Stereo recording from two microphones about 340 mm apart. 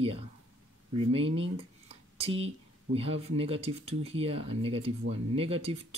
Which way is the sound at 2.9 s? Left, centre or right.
Centre.